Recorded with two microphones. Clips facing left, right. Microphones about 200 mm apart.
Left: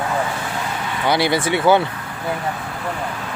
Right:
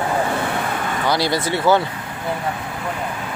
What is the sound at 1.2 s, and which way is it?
Speech, 60° left (ahead or behind).